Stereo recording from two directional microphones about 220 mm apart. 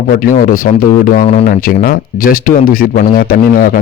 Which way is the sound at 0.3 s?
40° left (ahead or behind).